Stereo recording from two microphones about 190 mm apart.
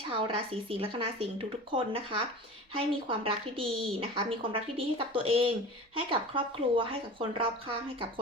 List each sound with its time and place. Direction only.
0.1 s a woman's voice: 30° right (ahead or behind)